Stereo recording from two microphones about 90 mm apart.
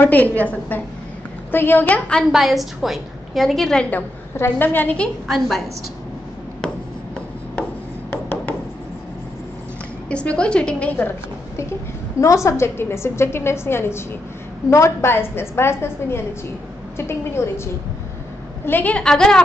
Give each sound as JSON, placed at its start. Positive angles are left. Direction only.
{"t": 0.0, "sound": "a woman's voice", "side_deg": 20}
{"t": 2.3, "sound": "a woman's voice", "side_deg": 0}
{"t": 3.9, "sound": "a woman's voice", "side_deg": 20}
{"t": 8.1, "sound": "a sound", "side_deg": 25}
{"t": 10.0, "sound": "a woman's voice", "side_deg": 15}
{"t": 12.4, "sound": "a woman's voice", "side_deg": 30}
{"t": 18.7, "sound": "a woman's voice", "side_deg": 20}